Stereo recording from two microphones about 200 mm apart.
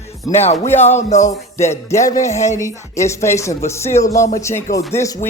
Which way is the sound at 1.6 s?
15° left (ahead or behind).